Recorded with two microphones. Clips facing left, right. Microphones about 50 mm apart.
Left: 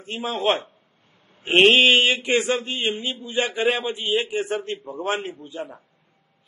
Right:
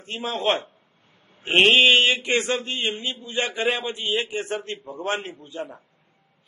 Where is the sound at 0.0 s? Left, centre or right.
Centre.